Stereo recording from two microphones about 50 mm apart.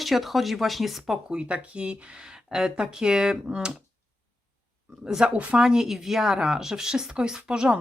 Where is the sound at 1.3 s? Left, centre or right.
Right.